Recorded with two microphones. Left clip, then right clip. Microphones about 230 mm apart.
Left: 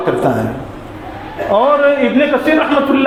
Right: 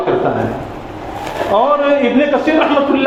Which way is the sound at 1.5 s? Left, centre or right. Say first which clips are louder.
Left 2 dB; left.